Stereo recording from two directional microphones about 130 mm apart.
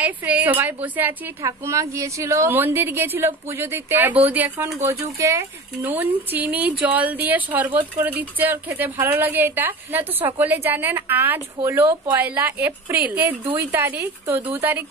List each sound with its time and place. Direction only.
0.0 s speech: 10° right (ahead or behind)